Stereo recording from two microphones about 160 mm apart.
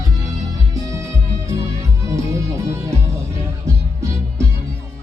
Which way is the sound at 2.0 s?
20° right (ahead or behind).